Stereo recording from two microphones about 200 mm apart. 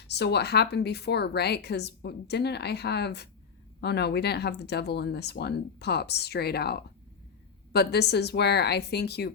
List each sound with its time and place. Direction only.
0.1 s speech: 55° left (ahead or behind)